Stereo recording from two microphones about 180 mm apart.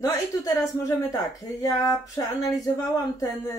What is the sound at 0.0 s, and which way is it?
A woman's voice, 20° left (ahead or behind).